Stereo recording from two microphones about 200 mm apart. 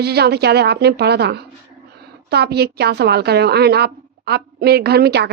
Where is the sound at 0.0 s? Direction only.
55° right (ahead or behind).